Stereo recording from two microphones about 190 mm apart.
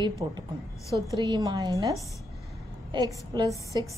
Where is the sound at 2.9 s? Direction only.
25° right (ahead or behind).